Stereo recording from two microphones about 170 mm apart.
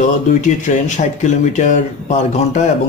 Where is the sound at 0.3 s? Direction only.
45° left (ahead or behind).